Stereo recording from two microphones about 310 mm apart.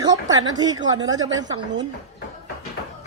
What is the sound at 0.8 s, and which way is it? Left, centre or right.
A woman's voice, right.